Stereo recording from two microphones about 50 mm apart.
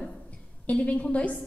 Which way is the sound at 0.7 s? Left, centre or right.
Left.